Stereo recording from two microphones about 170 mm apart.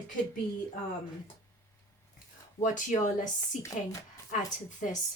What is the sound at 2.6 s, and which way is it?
Speech, 50° left (ahead or behind).